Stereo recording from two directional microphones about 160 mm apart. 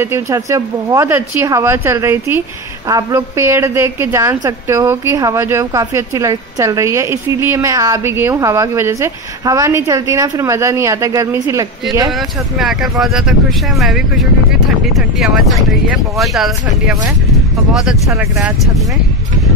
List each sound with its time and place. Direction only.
0.0 s a woman's voice: 20° right (ahead or behind)
12.1 s speech: centre (ahead or behind)
17.3 s vehicle: centre (ahead or behind)